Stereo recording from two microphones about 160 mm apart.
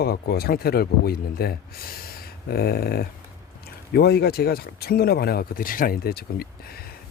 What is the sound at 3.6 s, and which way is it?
Speech, 80° left.